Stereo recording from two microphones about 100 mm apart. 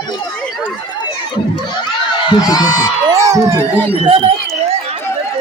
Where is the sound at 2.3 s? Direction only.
40° left (ahead or behind).